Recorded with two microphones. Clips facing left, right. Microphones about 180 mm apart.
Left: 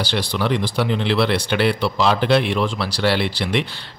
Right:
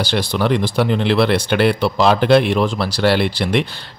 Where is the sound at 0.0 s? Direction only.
45° right (ahead or behind).